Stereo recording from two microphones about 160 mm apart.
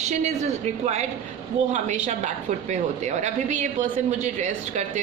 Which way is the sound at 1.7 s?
45° right (ahead or behind).